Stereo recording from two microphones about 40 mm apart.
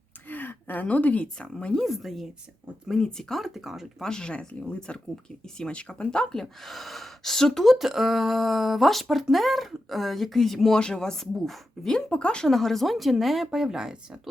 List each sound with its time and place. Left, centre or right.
0.3 s a sound: left
0.9 s speech: left
1.9 s speech: centre
2.9 s speech: centre
3.3 s speech: centre
4.0 s speech: centre
6.3 s speech: centre
10.8 s speech: centre
12.5 s speech: centre